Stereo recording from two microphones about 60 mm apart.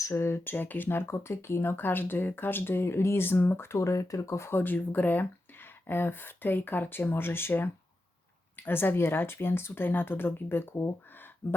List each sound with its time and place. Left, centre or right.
0.0 s speech: left
0.5 s speech: left
3.7 s speech: left
4.5 s speech: left